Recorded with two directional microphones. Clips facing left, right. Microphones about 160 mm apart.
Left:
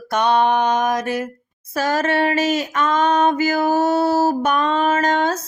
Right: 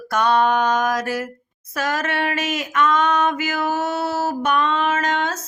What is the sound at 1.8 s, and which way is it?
Female singing, 30° left (ahead or behind).